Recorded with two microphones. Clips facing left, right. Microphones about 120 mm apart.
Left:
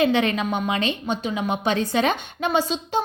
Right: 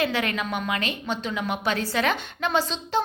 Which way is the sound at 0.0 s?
20° left (ahead or behind).